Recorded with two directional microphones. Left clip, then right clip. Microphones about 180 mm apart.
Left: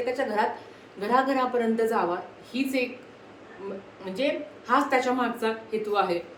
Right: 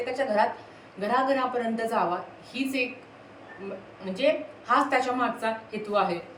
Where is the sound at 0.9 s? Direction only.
15° left (ahead or behind).